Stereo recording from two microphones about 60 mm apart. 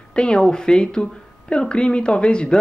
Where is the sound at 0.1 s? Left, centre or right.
Centre.